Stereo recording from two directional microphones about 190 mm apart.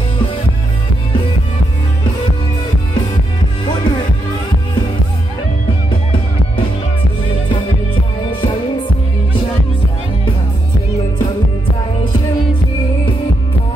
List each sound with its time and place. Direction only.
3.6 s music: 25° left (ahead or behind)
8.3 s music: 25° left (ahead or behind)